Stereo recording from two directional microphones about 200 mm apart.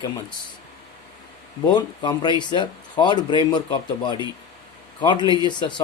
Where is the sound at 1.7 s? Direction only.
20° left (ahead or behind).